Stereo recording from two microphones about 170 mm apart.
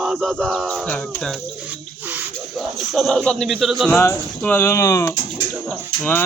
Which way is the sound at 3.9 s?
10° left (ahead or behind).